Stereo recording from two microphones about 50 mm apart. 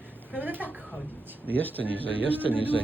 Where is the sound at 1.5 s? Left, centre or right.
Left.